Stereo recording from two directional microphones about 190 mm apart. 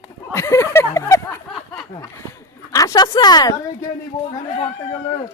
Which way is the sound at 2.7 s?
20° left (ahead or behind).